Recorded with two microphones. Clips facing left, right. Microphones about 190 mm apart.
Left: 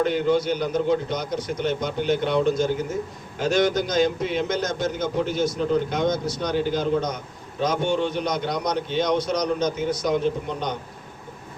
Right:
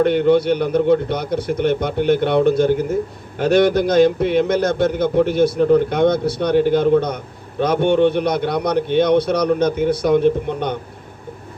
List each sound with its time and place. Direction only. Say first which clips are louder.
0.0 s a man's voice: right 7 dB; 60° right (ahead or behind)